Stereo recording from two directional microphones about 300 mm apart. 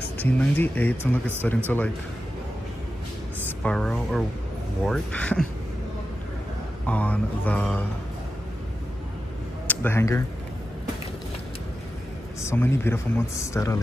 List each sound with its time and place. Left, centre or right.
0.2 s speech: centre
3.4 s speech: centre
6.9 s speech: centre
9.7 s speech: centre
12.4 s speech: centre